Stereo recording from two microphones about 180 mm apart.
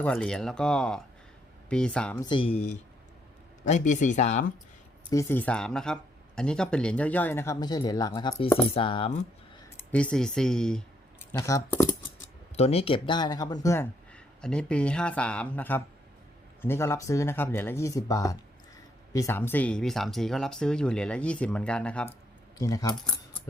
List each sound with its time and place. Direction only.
0.0 s speech: 5° left (ahead or behind)
2.2 s speech: 30° left (ahead or behind)
3.6 s speech: 45° left (ahead or behind)
5.1 s speech: 10° left (ahead or behind)
8.7 s speech: 30° left (ahead or behind)
9.9 s speech: 5° left (ahead or behind)
11.3 s speech: 20° left (ahead or behind)
12.5 s speech: 35° left (ahead or behind); by 13.8 s 20° left (ahead or behind)
14.1 s speech: 5° left (ahead or behind)
22.5 s speech: 20° left (ahead or behind)